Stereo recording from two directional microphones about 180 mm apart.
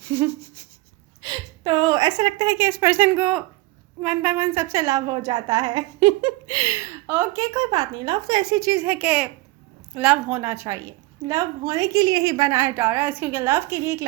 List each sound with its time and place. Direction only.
0.0 s a woman's voice: 15° right (ahead or behind)